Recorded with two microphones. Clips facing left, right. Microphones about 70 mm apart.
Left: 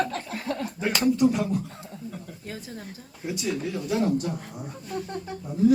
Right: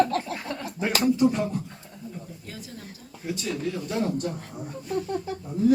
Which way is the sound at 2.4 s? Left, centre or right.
Left.